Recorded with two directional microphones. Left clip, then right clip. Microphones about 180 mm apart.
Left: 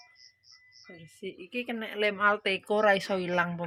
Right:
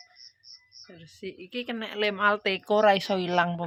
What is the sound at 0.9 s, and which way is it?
A woman's voice, centre (ahead or behind).